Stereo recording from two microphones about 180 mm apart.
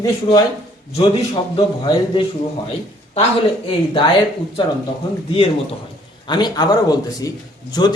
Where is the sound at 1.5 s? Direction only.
30° left (ahead or behind).